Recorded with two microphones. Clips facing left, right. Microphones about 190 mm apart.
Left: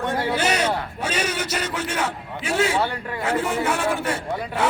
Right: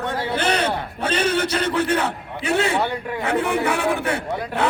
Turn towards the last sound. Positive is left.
turn(degrees=-60)  # may be behind; listen again after turning